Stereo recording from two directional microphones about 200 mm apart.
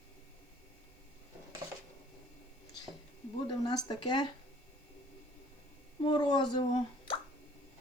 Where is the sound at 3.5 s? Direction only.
20° left (ahead or behind).